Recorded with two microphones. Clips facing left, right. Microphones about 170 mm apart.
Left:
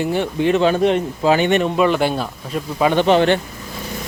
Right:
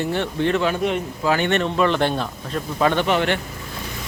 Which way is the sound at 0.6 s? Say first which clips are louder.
Left 6 dB; 30° left (ahead or behind).